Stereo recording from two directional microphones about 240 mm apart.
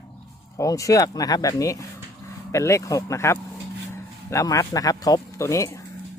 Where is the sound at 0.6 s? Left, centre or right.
Centre.